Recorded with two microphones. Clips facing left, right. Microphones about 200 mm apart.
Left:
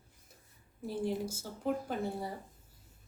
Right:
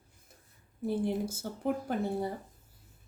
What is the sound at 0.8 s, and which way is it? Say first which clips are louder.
Speech: right 4 dB; 55° right (ahead or behind).